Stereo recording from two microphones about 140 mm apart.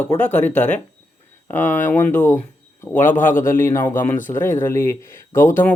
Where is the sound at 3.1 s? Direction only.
70° left (ahead or behind).